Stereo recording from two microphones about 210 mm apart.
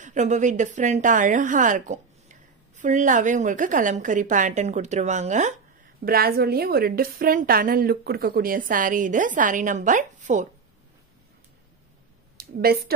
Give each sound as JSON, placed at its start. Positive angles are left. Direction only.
{"t": 0.0, "sound": "a woman's voice", "side_deg": -35}
{"t": 6.0, "sound": "a woman's voice", "side_deg": -45}
{"t": 12.4, "sound": "a woman's voice", "side_deg": -45}